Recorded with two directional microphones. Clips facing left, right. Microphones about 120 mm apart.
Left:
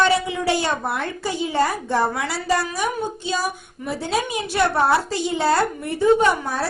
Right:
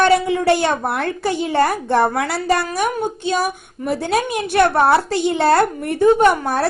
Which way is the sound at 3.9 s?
60° right (ahead or behind).